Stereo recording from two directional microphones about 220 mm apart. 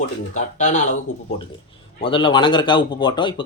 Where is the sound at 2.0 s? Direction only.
25° left (ahead or behind).